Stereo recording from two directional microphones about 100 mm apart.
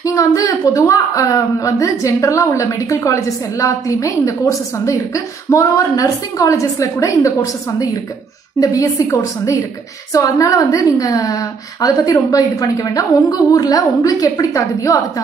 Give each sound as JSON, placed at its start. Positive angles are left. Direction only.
{"t": 0.0, "sound": "a woman's voice", "side_deg": 35}
{"t": 8.5, "sound": "a woman's voice", "side_deg": 35}